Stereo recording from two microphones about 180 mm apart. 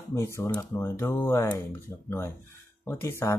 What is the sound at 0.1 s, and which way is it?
Speech, 15° left (ahead or behind).